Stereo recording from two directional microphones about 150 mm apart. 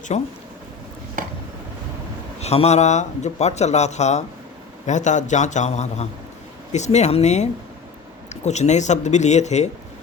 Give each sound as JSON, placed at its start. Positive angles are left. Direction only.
{"t": 0.1, "sound": "speech", "side_deg": 45}
{"t": 1.2, "sound": "a sound", "side_deg": -65}
{"t": 2.4, "sound": "speech", "side_deg": 45}